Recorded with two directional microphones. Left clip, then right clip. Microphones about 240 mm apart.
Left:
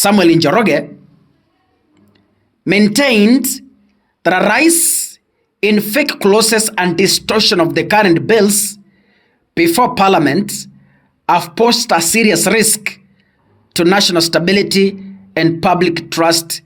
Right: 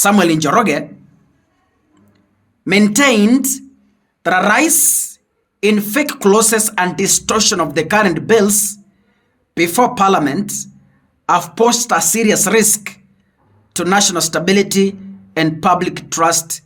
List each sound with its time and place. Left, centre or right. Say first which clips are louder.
0.0 s a woman's voice: left 3 dB; left
2.6 s a woman's voice: even; left